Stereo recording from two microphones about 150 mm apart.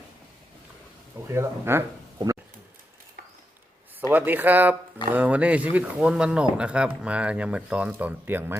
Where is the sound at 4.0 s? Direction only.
10° right (ahead or behind).